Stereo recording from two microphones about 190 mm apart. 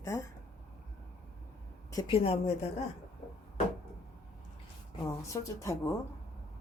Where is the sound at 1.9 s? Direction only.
25° left (ahead or behind).